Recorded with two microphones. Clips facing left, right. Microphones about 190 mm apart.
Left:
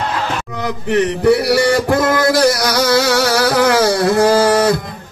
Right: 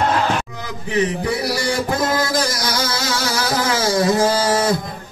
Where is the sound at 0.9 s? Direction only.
65° left (ahead or behind).